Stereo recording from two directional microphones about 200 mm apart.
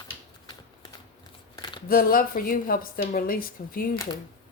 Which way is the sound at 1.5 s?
25° left (ahead or behind).